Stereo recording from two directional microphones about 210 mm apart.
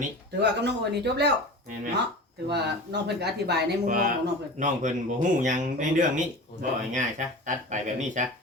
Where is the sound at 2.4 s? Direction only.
50° right (ahead or behind).